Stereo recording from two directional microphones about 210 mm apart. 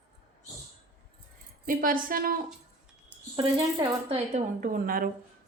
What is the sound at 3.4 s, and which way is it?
Speech, 20° right (ahead or behind).